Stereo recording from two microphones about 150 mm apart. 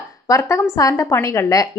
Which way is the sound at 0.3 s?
20° left (ahead or behind).